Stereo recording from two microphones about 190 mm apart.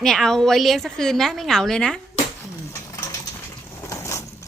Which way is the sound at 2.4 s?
15° left (ahead or behind).